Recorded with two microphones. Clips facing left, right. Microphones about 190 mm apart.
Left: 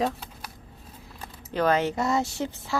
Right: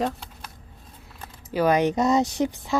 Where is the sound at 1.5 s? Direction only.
15° right (ahead or behind).